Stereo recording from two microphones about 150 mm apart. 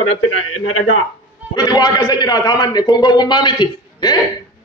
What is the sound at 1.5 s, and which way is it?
A man's voice, 25° left (ahead or behind).